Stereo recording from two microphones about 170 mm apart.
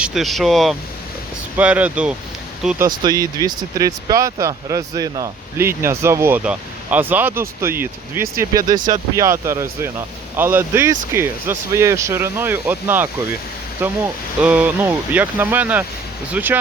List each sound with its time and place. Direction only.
0.0 s speech: centre (ahead or behind)